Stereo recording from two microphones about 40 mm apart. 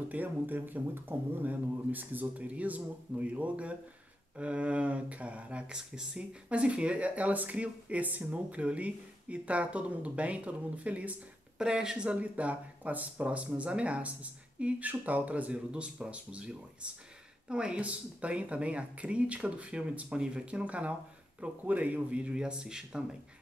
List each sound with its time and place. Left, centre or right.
0.1 s speech: right
0.6 s a man's voice: right; by 6.2 s centre
6.5 s speech: right
11.5 s a man's voice: centre
12.2 s a man's voice: right; by 23.0 s centre